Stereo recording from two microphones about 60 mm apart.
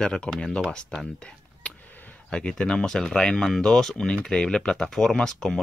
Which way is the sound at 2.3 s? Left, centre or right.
Centre.